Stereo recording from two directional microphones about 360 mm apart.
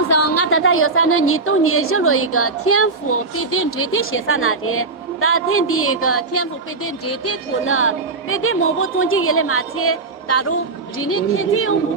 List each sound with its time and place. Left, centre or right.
0.1 s a woman's voice: left